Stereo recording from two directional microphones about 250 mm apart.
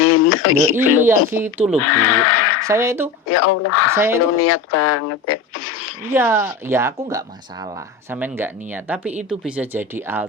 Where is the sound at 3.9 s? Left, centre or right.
Centre.